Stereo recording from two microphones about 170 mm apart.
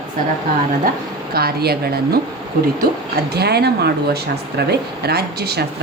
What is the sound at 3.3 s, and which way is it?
Speech, 70° right (ahead or behind).